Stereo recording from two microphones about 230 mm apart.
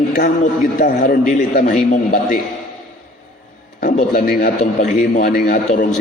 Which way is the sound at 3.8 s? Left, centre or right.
Left.